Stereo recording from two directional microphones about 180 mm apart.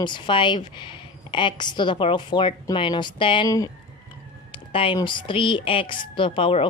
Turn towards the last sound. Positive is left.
turn(degrees=30)  # may be behind; listen again after turning